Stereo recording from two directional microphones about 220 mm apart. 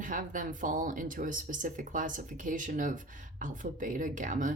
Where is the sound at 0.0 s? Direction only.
35° right (ahead or behind).